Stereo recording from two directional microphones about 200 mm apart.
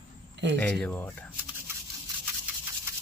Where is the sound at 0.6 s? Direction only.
5° left (ahead or behind).